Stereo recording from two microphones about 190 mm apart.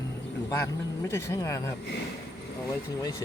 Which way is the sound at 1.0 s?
15° left (ahead or behind).